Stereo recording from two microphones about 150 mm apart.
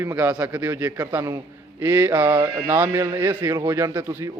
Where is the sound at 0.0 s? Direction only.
15° right (ahead or behind).